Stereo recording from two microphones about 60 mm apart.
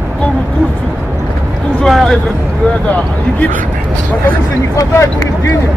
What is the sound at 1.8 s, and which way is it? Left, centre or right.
Speech, centre.